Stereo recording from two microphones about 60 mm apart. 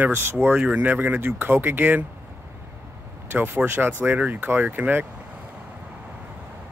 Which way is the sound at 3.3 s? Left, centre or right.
Right.